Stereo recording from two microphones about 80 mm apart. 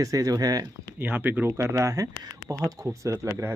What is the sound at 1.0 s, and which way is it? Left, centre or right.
Speech, right.